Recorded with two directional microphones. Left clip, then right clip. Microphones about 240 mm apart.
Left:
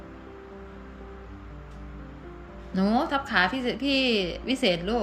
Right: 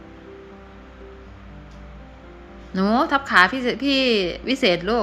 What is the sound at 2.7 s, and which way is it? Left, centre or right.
A woman's voice, centre.